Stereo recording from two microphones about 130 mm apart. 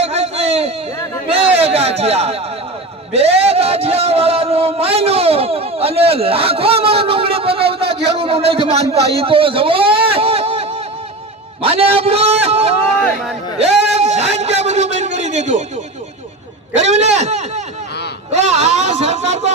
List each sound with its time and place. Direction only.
0.0 s a sound: 55° right (ahead or behind)
11.6 s a man's voice: 50° right (ahead or behind); by 15.6 s 65° right (ahead or behind)
16.7 s speech: 60° right (ahead or behind)